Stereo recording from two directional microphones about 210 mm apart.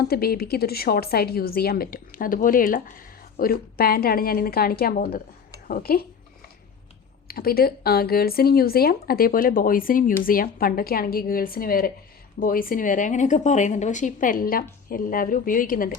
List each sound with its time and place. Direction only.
0.0 s speech: 45° left (ahead or behind)
7.3 s speech: 45° left (ahead or behind)